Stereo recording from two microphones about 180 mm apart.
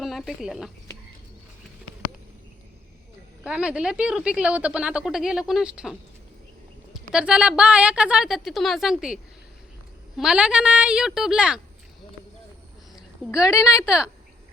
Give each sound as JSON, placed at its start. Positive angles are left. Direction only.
{"t": 0.0, "sound": "speech", "side_deg": 0}
{"t": 3.4, "sound": "speech", "side_deg": -5}
{"t": 13.3, "sound": "a woman's voice", "side_deg": 15}